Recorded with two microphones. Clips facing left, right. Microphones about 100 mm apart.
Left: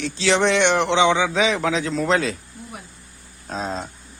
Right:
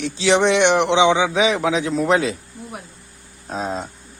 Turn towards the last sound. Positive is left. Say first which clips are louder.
# right 2 dB
turn(degrees=-15)  # may be behind; listen again after turning